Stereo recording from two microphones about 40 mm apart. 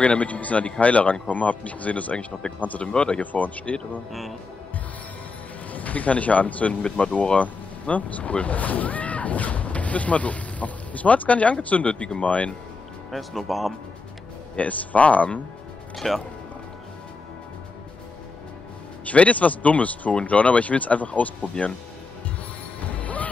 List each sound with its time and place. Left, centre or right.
0.0 s speech: left
2.9 s speech: left
3.2 s speech: left
4.1 s speech: centre
5.7 s speech: left
13.1 s speech: centre
14.6 s speech: left
16.0 s speech: centre
19.0 s speech: left